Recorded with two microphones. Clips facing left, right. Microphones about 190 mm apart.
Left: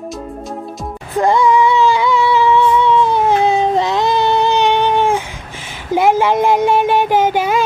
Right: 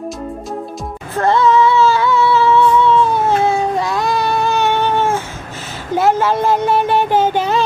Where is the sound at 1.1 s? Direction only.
15° left (ahead or behind).